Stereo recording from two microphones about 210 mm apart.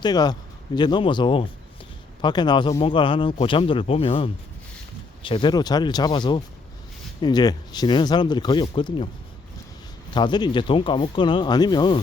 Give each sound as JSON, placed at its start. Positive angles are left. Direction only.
{"t": 0.0, "sound": "speech", "side_deg": 20}
{"t": 10.1, "sound": "speech", "side_deg": 20}